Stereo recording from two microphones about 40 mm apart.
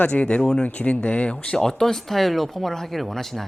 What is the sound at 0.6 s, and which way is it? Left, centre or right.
Speech, left.